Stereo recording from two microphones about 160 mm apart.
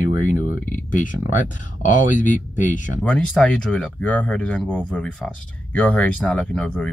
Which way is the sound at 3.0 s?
5° left (ahead or behind).